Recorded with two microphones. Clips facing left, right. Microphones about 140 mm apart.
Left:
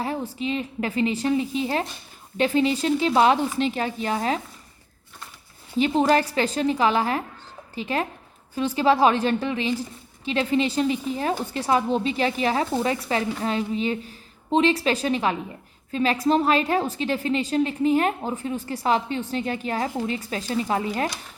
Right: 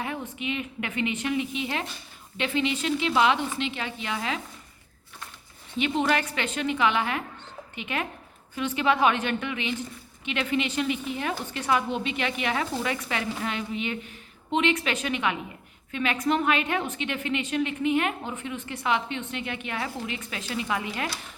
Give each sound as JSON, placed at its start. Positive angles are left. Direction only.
{"t": 0.0, "sound": "a woman's voice", "side_deg": 35}
{"t": 5.7, "sound": "a woman's voice", "side_deg": 35}